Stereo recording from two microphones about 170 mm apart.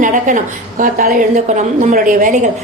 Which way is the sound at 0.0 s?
50° right (ahead or behind).